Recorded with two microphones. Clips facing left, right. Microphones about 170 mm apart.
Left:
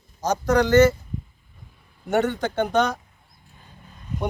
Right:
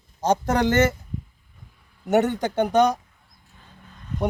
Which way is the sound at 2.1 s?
15° right (ahead or behind).